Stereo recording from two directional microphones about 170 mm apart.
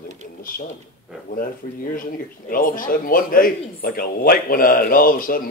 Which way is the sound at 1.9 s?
55° left (ahead or behind).